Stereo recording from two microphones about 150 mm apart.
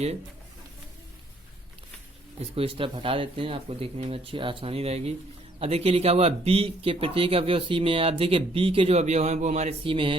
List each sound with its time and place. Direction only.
2.6 s speech: 35° right (ahead or behind)